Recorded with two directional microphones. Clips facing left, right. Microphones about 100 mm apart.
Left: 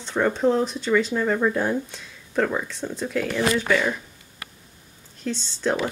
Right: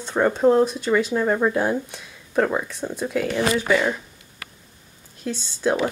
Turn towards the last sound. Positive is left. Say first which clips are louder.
# right 2 dB
turn(degrees=-5)  # may be behind; listen again after turning